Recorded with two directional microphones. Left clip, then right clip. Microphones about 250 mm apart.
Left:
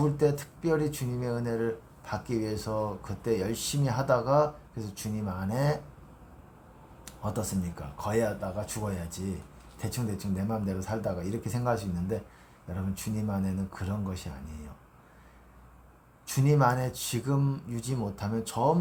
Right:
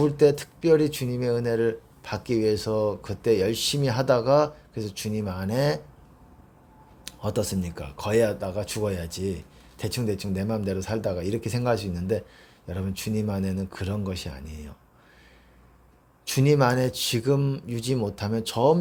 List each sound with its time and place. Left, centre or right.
0.0 s speech: right
7.0 s speech: right
16.2 s speech: right